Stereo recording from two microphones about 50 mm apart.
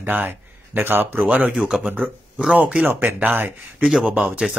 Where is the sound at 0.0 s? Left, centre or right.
Right.